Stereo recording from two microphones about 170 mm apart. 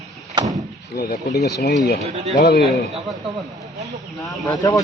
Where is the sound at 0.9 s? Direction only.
65° left (ahead or behind).